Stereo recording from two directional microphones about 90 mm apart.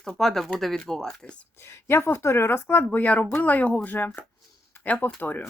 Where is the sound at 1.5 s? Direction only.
25° left (ahead or behind).